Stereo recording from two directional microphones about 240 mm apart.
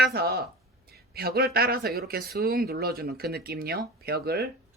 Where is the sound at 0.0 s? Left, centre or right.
Right.